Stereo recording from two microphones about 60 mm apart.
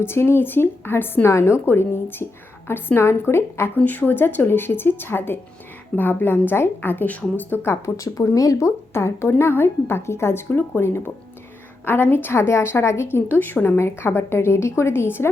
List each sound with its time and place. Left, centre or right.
0.0 s a woman's voice: left
1.3 s a woman's voice: left
3.8 s a woman's voice: left
7.9 s a woman's voice: left